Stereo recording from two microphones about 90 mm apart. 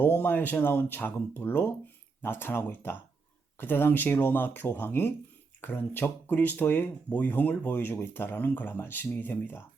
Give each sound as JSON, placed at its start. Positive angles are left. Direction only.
{"t": 0.0, "sound": "speech", "side_deg": 25}